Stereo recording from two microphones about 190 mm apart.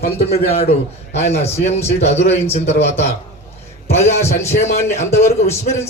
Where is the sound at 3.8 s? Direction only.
15° left (ahead or behind).